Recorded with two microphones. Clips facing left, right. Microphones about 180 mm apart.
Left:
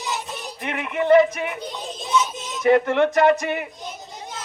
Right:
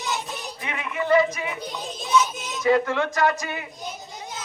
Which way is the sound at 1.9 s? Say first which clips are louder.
Right 1 dB; centre (ahead or behind).